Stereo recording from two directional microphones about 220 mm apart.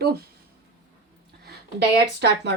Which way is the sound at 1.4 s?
50° right (ahead or behind).